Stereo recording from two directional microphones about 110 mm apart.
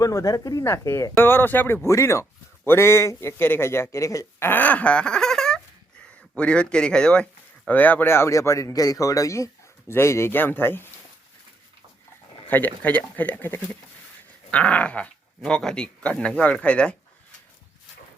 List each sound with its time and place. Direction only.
0.0 s speech: 30° left (ahead or behind)
12.5 s speech: 15° left (ahead or behind)